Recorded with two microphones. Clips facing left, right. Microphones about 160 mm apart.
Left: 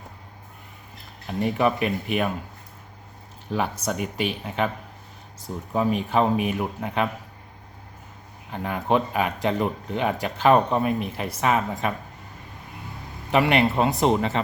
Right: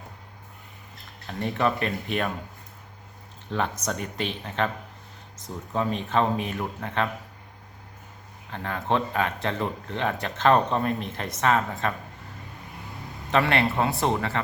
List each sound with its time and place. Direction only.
1.3 s speech: 10° left (ahead or behind)
3.5 s speech: 10° left (ahead or behind)
5.7 s speech: 10° left (ahead or behind)
8.4 s speech: 15° left (ahead or behind)
13.3 s speech: 15° left (ahead or behind)